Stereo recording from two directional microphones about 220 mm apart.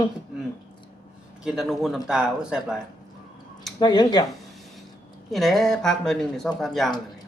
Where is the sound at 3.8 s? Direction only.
20° left (ahead or behind).